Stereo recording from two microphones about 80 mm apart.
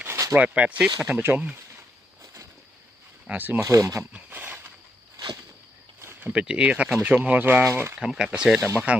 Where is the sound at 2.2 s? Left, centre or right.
Right.